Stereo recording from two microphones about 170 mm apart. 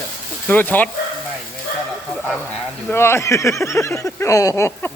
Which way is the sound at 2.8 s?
15° left (ahead or behind).